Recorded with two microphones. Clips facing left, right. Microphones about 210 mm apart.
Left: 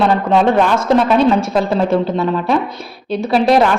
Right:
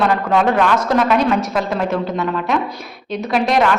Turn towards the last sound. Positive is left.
turn(degrees=30)  # may be behind; listen again after turning